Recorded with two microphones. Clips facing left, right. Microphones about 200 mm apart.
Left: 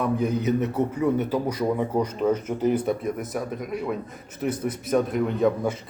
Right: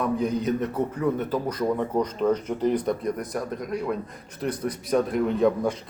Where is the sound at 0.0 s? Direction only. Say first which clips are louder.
Left 1 dB; 5° left (ahead or behind).